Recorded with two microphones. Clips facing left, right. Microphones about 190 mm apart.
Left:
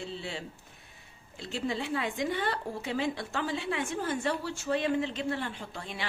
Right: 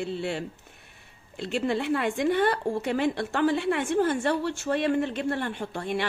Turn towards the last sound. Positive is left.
turn(degrees=-60)  # may be behind; listen again after turning